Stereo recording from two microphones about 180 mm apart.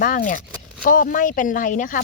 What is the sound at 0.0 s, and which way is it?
Speech, 50° left (ahead or behind).